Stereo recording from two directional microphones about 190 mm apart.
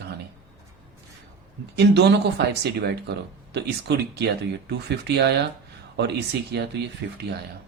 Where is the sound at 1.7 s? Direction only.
60° right (ahead or behind).